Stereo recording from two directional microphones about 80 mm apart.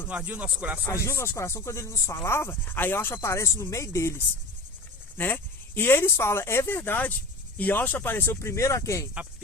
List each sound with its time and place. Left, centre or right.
0.1 s speech: centre
1.0 s speech: left
5.1 s speech: left